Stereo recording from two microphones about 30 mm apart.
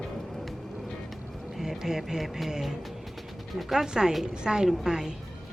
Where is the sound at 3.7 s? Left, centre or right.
Right.